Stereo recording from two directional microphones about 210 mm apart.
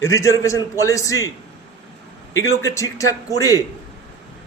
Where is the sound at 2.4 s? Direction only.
15° left (ahead or behind).